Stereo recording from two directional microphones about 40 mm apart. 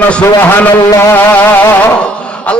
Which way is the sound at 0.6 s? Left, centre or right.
Left.